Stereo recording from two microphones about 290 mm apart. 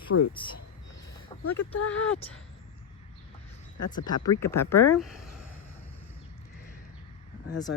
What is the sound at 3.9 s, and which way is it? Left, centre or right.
Speech, centre.